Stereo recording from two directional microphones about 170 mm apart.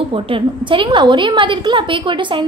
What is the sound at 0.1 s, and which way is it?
A woman's voice, 30° right (ahead or behind).